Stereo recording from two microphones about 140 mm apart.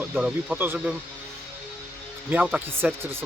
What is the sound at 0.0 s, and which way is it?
Speech, 10° right (ahead or behind).